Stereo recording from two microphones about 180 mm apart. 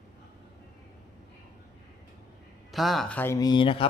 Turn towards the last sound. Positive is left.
turn(degrees=30)  # may be behind; listen again after turning